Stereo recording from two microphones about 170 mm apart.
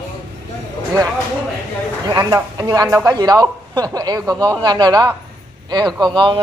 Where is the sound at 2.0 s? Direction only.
20° right (ahead or behind).